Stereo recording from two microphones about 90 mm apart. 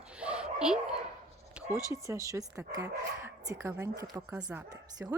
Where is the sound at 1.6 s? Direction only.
10° right (ahead or behind).